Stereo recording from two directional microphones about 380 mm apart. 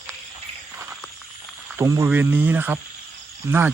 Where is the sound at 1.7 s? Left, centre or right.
Centre.